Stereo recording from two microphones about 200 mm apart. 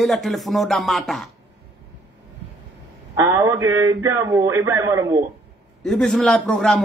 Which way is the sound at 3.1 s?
15° right (ahead or behind).